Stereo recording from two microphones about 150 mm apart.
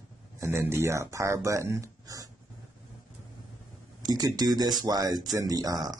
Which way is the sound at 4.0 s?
25° right (ahead or behind).